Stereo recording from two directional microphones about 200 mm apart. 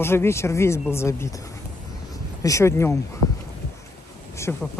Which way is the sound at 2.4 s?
15° left (ahead or behind).